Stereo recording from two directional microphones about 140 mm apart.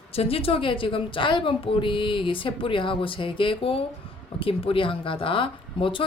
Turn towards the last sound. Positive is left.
turn(degrees=40)  # may be behind; listen again after turning